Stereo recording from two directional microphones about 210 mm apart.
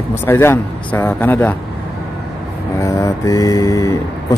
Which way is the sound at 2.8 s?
15° left (ahead or behind).